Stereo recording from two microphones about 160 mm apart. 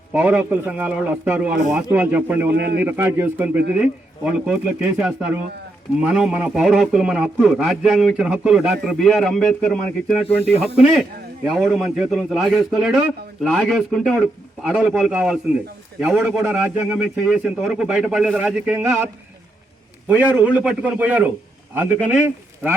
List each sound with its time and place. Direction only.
0.1 s a man's voice: 10° right (ahead or behind)
2.6 s a man's voice: 90° right
2.8 s a man's voice: 10° right (ahead or behind)